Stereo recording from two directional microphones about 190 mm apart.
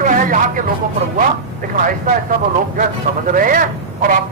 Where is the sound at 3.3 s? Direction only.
45° right (ahead or behind).